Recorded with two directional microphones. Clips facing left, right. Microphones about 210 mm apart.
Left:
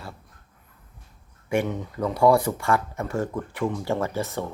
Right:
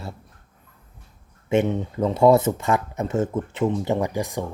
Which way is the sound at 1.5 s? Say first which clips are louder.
Right 4 dB; 25° right (ahead or behind).